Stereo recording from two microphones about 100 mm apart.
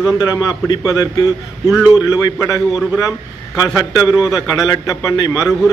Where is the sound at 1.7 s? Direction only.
15° right (ahead or behind).